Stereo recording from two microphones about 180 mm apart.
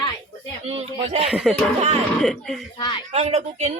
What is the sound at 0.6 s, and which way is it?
Speech, 35° right (ahead or behind).